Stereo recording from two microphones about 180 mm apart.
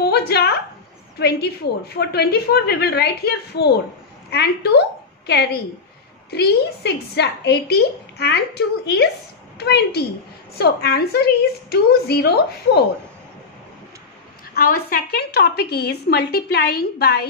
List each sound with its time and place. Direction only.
0.0 s a woman's voice: 65° left (ahead or behind)
14.5 s speech: 55° left (ahead or behind)